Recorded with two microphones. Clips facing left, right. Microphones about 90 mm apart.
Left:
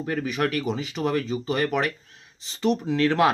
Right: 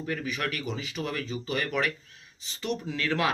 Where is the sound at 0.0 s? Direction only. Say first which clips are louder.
Left 6 dB; 35° left (ahead or behind).